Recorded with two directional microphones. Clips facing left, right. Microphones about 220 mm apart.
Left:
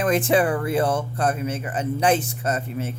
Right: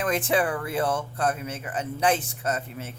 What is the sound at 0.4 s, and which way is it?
Speech, 30° left (ahead or behind).